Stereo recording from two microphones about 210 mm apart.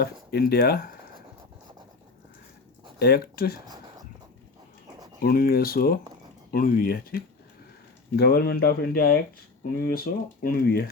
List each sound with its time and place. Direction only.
0.0 s speech: 50° left (ahead or behind)
3.0 s speech: 45° left (ahead or behind)
5.2 s speech: 45° left (ahead or behind)